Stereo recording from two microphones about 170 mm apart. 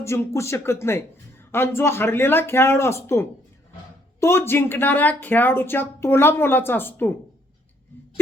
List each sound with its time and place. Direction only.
0.0 s speech: 15° left (ahead or behind)